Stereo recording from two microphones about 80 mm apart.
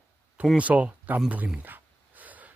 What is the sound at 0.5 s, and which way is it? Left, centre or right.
Speech, centre.